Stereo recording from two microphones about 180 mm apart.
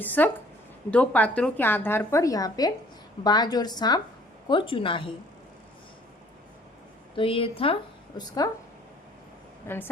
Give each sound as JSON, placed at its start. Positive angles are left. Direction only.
{"t": 0.0, "sound": "a woman's voice", "side_deg": 10}
{"t": 7.2, "sound": "a woman's voice", "side_deg": 30}
{"t": 9.6, "sound": "a woman's voice", "side_deg": 10}